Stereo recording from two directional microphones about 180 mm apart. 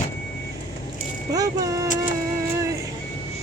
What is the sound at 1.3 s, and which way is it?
Speech, 20° right (ahead or behind).